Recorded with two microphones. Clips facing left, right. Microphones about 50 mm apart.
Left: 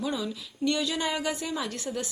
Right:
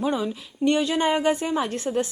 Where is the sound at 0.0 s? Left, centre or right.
Right.